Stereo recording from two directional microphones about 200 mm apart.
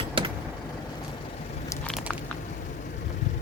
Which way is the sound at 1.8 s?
Centre (ahead or behind).